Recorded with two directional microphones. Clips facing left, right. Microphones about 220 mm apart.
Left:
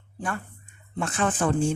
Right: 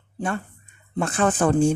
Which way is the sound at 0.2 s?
25° right (ahead or behind).